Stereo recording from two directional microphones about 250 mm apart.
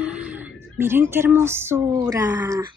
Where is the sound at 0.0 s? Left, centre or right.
Centre.